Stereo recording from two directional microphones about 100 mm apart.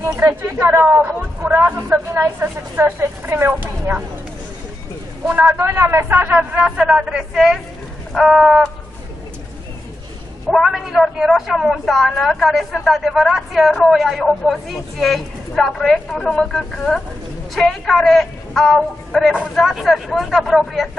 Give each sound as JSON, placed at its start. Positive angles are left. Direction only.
{"t": 0.5, "sound": "speech", "side_deg": -25}
{"t": 5.3, "sound": "a man's voice", "side_deg": -20}
{"t": 10.5, "sound": "a woman's voice", "side_deg": 0}